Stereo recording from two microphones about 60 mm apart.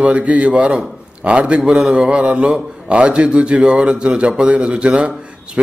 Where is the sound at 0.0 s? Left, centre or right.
Right.